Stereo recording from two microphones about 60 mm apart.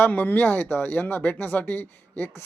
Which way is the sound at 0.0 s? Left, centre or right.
Left.